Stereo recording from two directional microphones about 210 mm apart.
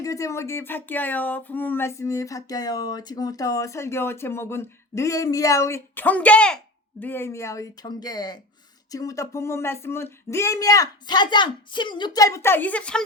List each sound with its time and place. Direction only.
0.0 s speech: 15° left (ahead or behind)